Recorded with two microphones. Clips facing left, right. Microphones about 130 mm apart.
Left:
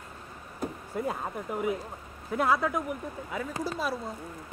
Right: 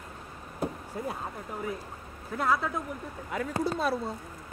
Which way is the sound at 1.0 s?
15° left (ahead or behind).